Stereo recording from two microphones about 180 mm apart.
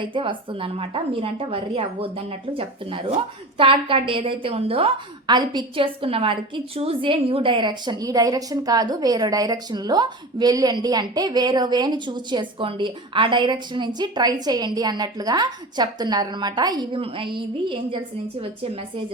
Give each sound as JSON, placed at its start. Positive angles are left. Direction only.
{"t": 0.0, "sound": "a woman's voice", "side_deg": -25}